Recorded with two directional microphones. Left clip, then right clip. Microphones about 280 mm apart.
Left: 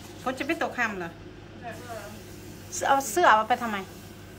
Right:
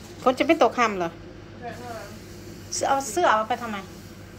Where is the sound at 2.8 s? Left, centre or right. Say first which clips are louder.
Even; centre.